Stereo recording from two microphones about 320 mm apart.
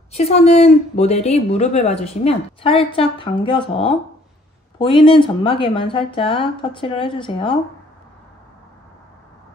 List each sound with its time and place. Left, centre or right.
0.1 s a woman's voice: centre